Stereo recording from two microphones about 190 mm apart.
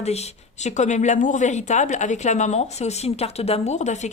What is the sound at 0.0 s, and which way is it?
Speech, 35° left (ahead or behind).